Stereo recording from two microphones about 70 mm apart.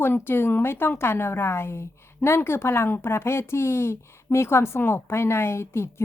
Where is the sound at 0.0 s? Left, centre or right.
Left.